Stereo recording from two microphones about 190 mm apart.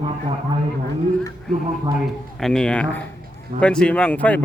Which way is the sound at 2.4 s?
5° left (ahead or behind).